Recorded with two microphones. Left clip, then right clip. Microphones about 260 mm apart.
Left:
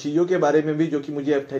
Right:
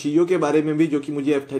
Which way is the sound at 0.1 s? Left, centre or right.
Right.